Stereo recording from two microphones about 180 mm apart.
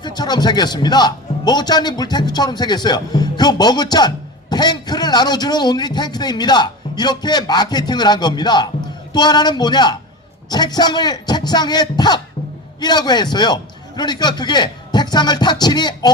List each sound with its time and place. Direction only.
0.0 s a man's voice: 25° left (ahead or behind)